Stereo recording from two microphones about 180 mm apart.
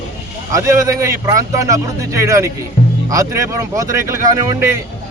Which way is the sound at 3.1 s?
15° right (ahead or behind).